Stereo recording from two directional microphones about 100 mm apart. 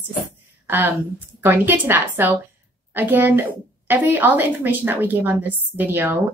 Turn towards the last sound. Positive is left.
turn(degrees=-20)  # may be behind; listen again after turning